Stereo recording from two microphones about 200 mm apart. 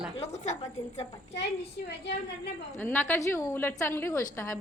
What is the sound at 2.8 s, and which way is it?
A woman's voice, 10° left (ahead or behind).